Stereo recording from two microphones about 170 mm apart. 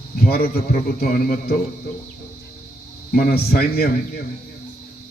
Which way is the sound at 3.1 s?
60° left (ahead or behind).